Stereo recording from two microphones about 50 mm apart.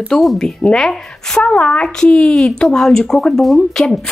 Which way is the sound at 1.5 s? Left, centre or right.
Left.